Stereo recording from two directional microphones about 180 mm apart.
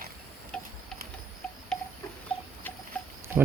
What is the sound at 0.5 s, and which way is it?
Tick-tock, 5° left (ahead or behind).